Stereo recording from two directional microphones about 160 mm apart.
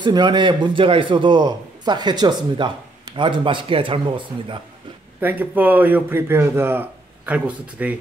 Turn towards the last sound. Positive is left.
turn(degrees=-10)  # may be behind; listen again after turning